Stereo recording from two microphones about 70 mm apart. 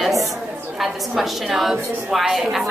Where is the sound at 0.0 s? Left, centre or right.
Centre.